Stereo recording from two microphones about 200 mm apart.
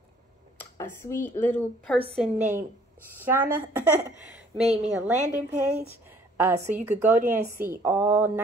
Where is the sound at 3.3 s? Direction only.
10° right (ahead or behind).